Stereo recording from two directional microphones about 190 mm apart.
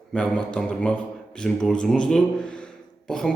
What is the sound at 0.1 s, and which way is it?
A man's voice, 5° left (ahead or behind).